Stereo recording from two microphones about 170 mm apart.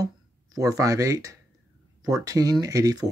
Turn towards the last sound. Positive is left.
turn(degrees=-20)  # may be behind; listen again after turning